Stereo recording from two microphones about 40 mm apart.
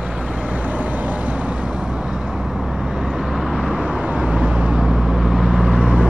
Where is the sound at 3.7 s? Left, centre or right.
Right.